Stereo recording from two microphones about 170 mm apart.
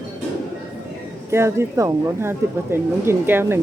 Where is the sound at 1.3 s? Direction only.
15° right (ahead or behind).